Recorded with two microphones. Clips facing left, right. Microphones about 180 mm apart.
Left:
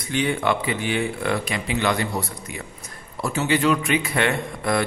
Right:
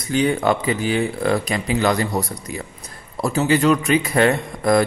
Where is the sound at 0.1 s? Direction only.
40° right (ahead or behind).